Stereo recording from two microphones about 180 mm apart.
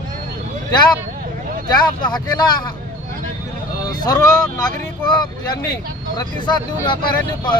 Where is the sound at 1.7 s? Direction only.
25° left (ahead or behind).